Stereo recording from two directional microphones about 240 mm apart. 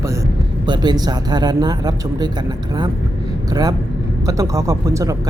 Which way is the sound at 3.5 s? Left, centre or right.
Centre.